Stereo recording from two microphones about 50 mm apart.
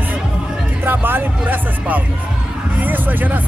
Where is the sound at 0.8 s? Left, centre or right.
Right.